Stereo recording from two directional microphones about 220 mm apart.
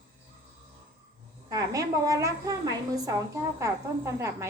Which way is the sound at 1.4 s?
15° right (ahead or behind).